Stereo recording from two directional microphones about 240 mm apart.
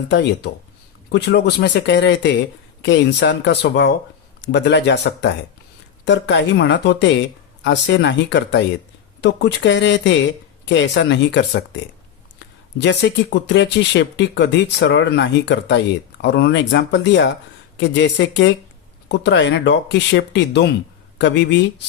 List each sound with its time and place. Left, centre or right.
0.1 s speech: left
12.8 s speech: left